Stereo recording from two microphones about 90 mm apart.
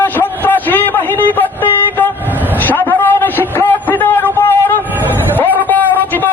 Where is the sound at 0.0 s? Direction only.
20° left (ahead or behind).